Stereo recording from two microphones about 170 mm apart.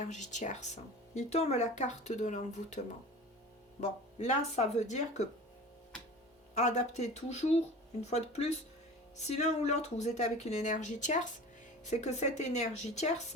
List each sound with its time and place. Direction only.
0.0 s speech: 45° left (ahead or behind)
6.6 s speech: 40° left (ahead or behind)